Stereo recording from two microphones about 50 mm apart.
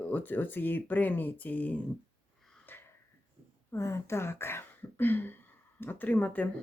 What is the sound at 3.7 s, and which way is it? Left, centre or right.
Speech, left.